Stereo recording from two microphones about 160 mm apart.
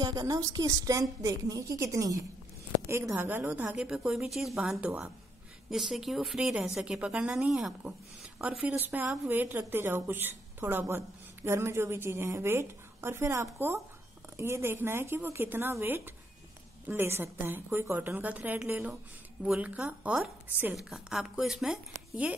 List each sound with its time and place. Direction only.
0.0 s a woman's voice: 25° right (ahead or behind); by 22.3 s 5° right (ahead or behind)